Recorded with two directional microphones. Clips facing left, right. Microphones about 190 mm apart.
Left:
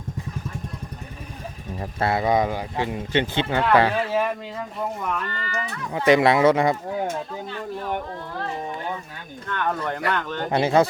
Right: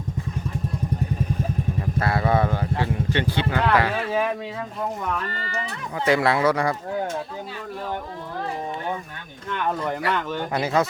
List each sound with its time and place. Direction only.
2.0 s speech: 20° left (ahead or behind)
4.1 s speech: centre (ahead or behind)
5.3 s speech: 35° right (ahead or behind)
6.1 s speech: 20° left (ahead or behind)
9.5 s speech: 10° right (ahead or behind)
10.5 s speech: 30° left (ahead or behind)